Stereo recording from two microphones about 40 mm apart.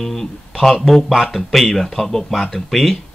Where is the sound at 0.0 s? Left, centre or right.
Centre.